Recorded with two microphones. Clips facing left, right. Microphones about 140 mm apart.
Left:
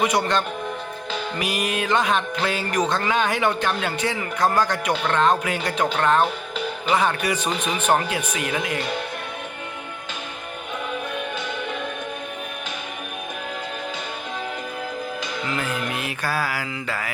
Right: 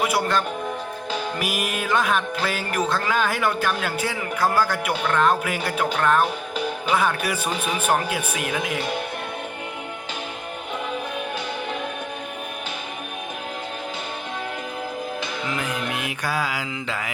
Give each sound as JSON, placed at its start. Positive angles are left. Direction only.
{"t": 0.0, "sound": "music", "side_deg": -5}
{"t": 6.8, "sound": "speech", "side_deg": -5}
{"t": 15.4, "sound": "speech", "side_deg": -15}